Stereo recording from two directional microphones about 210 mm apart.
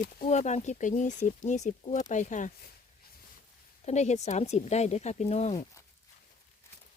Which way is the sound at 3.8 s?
30° left (ahead or behind).